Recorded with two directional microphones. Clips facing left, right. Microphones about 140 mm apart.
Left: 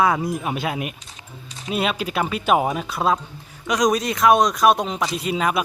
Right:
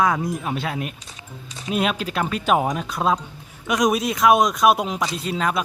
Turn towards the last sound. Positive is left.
turn(degrees=5)  # may be behind; listen again after turning